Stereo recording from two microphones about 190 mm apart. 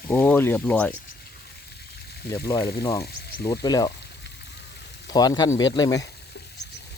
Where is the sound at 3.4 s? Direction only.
20° left (ahead or behind).